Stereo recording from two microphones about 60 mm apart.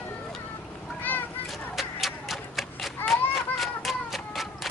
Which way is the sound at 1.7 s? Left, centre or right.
Centre.